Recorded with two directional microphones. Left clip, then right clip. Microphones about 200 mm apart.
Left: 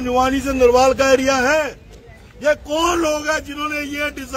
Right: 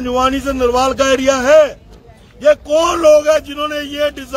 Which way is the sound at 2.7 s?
40° right (ahead or behind).